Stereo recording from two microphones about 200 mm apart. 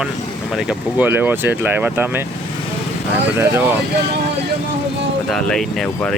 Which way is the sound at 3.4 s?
10° right (ahead or behind).